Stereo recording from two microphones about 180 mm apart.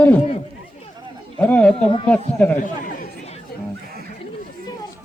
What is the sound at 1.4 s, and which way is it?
Speech, 10° left (ahead or behind).